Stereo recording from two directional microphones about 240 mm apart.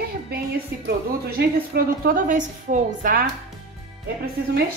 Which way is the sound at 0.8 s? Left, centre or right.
Right.